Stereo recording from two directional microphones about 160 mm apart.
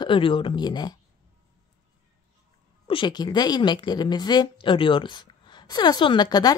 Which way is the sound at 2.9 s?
30° left (ahead or behind).